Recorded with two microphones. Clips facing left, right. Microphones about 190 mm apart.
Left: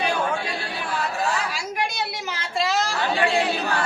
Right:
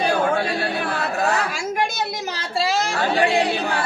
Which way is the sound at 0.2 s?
50° right (ahead or behind).